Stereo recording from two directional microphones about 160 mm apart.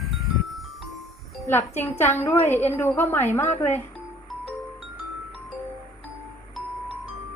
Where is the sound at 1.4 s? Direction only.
15° left (ahead or behind).